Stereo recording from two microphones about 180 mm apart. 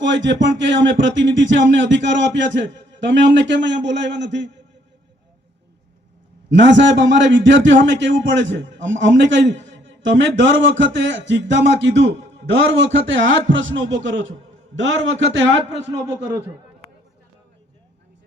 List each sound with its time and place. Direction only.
0.0 s a man's voice: 90° right
6.5 s a man's voice: 80° right